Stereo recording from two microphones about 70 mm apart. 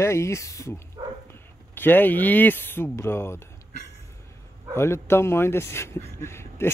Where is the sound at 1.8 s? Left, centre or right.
Left.